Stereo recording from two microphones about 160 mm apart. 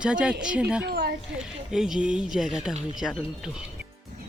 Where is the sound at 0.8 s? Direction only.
80° right.